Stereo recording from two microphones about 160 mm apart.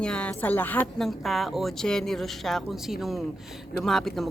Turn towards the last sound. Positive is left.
turn(degrees=0)  # may be behind; listen again after turning